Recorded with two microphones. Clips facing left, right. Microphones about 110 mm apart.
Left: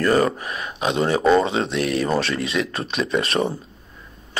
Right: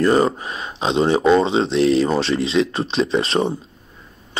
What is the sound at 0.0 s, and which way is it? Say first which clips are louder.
Speech: right 2 dB; 25° right (ahead or behind).